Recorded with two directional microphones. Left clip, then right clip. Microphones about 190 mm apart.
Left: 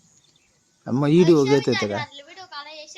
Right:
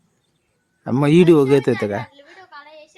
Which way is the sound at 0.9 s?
55° right (ahead or behind).